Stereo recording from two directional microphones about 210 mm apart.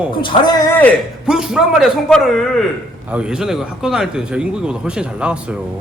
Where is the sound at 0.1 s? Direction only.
25° left (ahead or behind).